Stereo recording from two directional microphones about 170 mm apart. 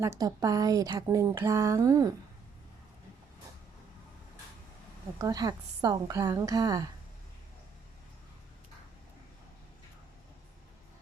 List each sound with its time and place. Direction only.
0.0 s speech: 20° right (ahead or behind)
5.2 s speech: 20° right (ahead or behind)